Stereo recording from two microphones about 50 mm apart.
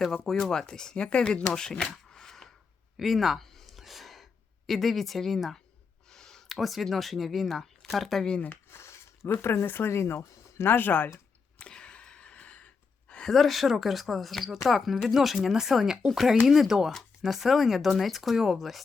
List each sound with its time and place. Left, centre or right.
0.3 s speech: centre
1.8 s shuffling cards: centre
3.0 s gasp: centre
6.1 s speech: centre
8.7 s speech: left
11.6 s gasp: left
13.3 s speech: centre